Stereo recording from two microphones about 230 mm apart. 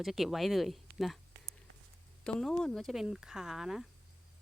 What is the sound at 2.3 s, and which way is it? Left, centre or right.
Speech, centre.